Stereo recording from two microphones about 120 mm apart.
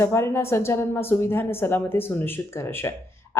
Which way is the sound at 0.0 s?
20° left (ahead or behind).